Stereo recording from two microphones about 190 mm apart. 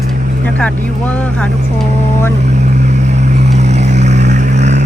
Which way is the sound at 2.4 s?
35° right (ahead or behind).